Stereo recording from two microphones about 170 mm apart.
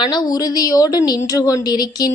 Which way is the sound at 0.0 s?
25° left (ahead or behind).